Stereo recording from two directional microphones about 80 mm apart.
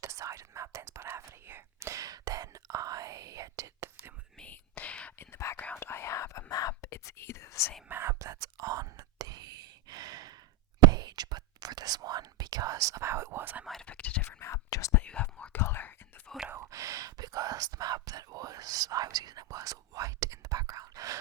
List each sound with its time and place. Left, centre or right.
0.0 s whispering: right
2.0 s whispering: right
4.4 s whispering: centre
5.1 s whispering: left
7.9 s whispering: right
13.4 s whispering: right
13.8 s whispering: centre
14.2 s whispering: left
14.9 s whispering: centre
15.5 s whispering: left
16.6 s whispering: right